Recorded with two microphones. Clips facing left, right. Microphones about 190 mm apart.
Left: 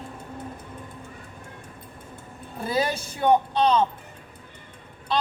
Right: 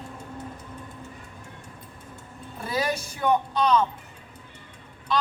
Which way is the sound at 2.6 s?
30° left (ahead or behind).